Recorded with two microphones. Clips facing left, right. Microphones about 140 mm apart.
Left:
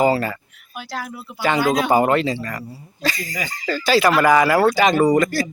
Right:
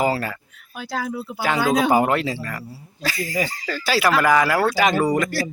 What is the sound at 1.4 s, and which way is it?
A man's voice, 5° right (ahead or behind).